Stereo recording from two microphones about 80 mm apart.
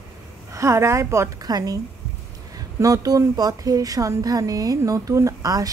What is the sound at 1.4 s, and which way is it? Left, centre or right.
A woman's voice, right.